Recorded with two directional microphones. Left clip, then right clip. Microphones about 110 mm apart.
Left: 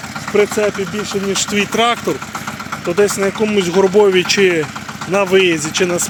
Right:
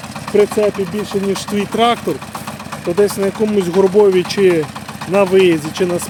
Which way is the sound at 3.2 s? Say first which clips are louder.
Left 1 dB; 25° right (ahead or behind).